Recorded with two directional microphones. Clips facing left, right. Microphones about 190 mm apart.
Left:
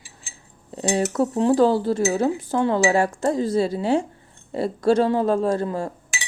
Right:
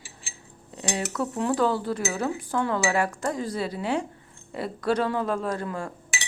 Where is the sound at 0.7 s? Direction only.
35° left (ahead or behind).